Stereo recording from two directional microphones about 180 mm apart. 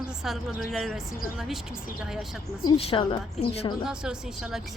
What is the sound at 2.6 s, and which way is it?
A woman's voice, 30° left (ahead or behind).